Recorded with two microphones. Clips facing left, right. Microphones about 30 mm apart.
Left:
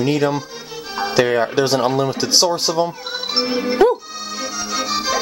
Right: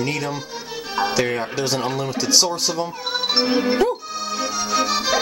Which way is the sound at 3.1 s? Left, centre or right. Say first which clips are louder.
Right 1 dB; centre.